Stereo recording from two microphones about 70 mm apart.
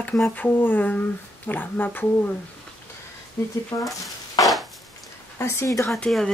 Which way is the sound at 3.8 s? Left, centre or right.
Left.